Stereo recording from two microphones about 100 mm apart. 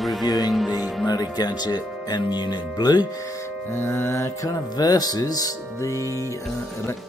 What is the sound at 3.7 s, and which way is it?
Speech, 25° left (ahead or behind).